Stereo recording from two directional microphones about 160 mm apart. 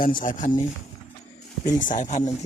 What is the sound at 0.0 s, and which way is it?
Speech, 60° left (ahead or behind).